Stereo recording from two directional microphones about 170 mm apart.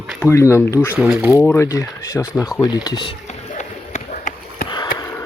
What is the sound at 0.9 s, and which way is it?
Speech, 5° right (ahead or behind).